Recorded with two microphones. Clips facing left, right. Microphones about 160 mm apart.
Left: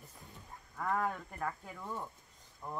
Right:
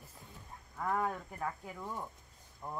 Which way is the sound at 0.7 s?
5° right (ahead or behind).